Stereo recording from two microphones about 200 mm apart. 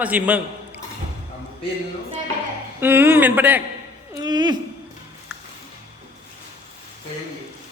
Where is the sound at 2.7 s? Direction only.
10° right (ahead or behind).